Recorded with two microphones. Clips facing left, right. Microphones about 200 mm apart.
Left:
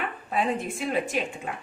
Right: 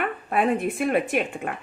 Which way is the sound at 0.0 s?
60° right (ahead or behind).